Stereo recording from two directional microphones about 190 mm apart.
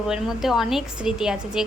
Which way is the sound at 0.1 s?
Centre (ahead or behind).